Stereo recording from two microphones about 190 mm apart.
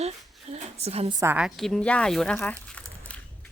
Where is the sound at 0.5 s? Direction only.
35° right (ahead or behind).